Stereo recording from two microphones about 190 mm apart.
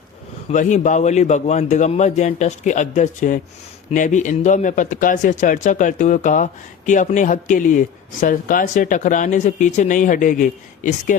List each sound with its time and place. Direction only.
0.5 s speech: 40° left (ahead or behind)